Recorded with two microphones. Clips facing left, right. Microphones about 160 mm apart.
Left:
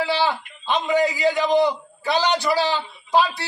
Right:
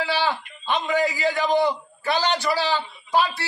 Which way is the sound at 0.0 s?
15° left (ahead or behind).